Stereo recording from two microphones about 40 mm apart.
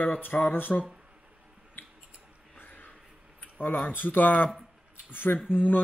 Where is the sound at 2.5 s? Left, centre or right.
Left.